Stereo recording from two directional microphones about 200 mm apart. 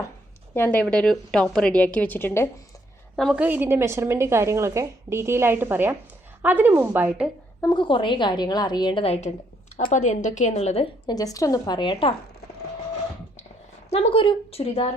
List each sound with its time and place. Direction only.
0.5 s a woman's voice: 10° left (ahead or behind)
3.2 s a woman's voice: 5° right (ahead or behind)
7.6 s a woman's voice: 25° left (ahead or behind)
13.9 s a woman's voice: 30° left (ahead or behind)